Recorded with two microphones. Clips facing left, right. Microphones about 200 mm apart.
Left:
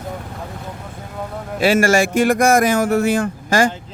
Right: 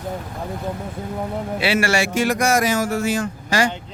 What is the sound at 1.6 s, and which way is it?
Speech, 45° left (ahead or behind).